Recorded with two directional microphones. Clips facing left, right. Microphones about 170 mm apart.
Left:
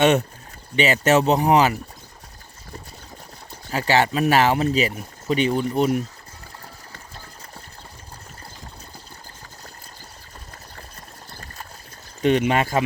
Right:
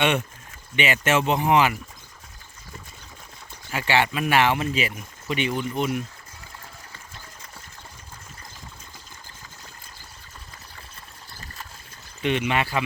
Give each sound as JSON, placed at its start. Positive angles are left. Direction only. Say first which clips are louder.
{"t": 0.0, "sound": "speech", "louder": "left 6 dB", "side_deg": 40}
{"t": 3.7, "sound": "speech", "louder": "left 3 dB", "side_deg": 40}
{"t": 12.2, "sound": "speech", "louder": "left 5 dB", "side_deg": 40}